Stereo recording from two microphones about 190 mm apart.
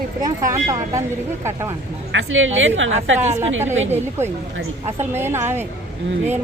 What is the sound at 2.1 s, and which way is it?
Speech, 90° right.